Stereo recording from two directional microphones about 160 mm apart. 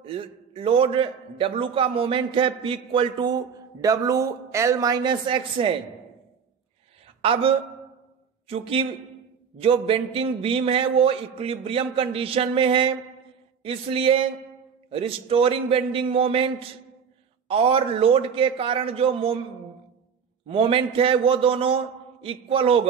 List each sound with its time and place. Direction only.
0.0 s a man's voice: 35° right (ahead or behind)
7.2 s a man's voice: 35° right (ahead or behind)
20.4 s a man's voice: 35° right (ahead or behind)